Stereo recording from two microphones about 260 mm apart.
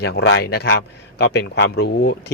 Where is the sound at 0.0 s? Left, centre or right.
Left.